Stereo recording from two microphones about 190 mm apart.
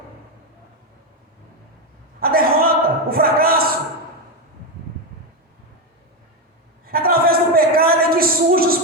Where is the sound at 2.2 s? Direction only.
50° right (ahead or behind).